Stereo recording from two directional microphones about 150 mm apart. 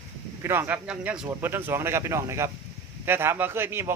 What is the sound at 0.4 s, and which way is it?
Speech, 15° right (ahead or behind).